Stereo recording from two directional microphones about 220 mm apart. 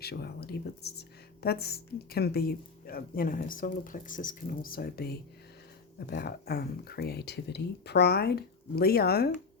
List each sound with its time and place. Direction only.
0.0 s speech: 45° left (ahead or behind)